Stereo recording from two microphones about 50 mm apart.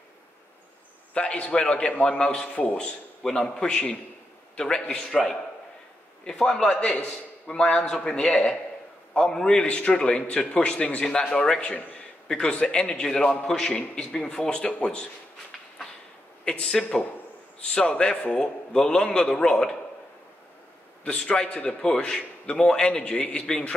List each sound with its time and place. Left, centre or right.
1.1 s a man's voice: left
6.2 s a man's voice: centre
16.4 s a man's voice: centre
21.0 s a man's voice: left